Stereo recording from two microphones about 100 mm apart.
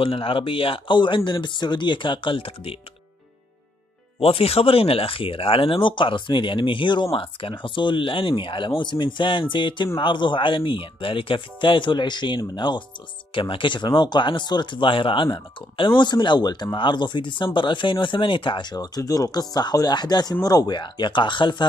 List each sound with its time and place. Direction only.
0.0 s speech: 65° left (ahead or behind)
4.2 s speech: 75° left (ahead or behind); by 21.6 s 50° left (ahead or behind)